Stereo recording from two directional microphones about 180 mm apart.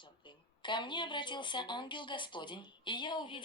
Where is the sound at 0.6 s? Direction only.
25° left (ahead or behind).